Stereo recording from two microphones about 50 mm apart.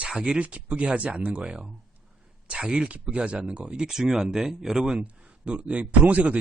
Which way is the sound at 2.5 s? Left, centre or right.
Centre.